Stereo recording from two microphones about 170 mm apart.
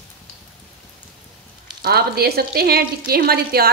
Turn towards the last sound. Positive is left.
turn(degrees=-65)  # may be behind; listen again after turning